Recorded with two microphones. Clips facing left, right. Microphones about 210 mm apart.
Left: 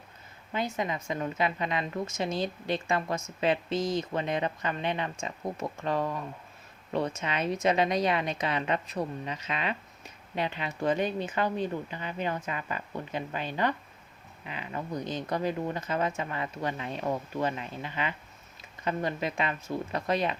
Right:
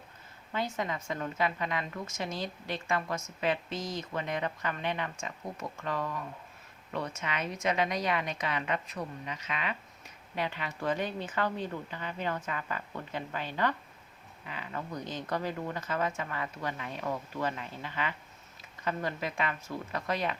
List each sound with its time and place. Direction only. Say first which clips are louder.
0.5 s a woman's voice: left 2 dB; 15° left (ahead or behind)